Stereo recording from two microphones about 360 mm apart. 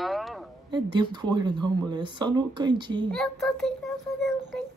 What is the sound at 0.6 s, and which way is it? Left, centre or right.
Speech, centre.